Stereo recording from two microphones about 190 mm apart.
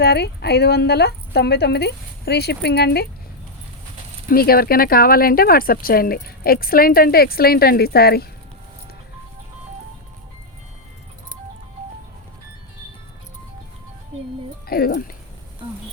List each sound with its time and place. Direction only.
0.0 s speech: 60° left (ahead or behind)
4.3 s speech: 50° left (ahead or behind)
14.7 s speech: 55° left (ahead or behind)